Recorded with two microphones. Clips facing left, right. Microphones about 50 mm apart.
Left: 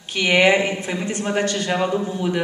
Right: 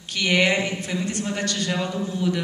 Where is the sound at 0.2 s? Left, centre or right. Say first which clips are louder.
Left 5 dB; left.